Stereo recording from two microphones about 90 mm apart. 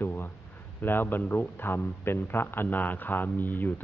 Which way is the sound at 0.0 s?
25° left (ahead or behind).